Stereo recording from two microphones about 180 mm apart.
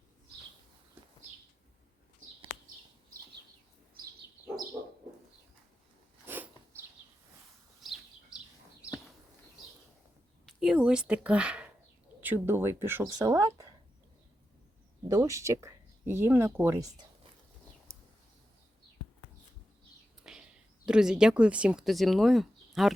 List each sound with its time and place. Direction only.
6.2 s a sound: 10° right (ahead or behind)
7.8 s bird: centre (ahead or behind)
10.4 s speech: 5° right (ahead or behind); by 13.7 s 20° right (ahead or behind)
15.0 s speech: 15° right (ahead or behind)
20.3 s a sound: 5° right (ahead or behind)
20.8 s speech: 5° right (ahead or behind)